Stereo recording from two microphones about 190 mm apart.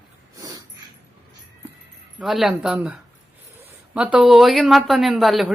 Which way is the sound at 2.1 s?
Centre (ahead or behind).